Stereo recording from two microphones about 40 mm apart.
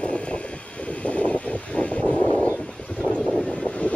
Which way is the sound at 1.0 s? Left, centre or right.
Centre.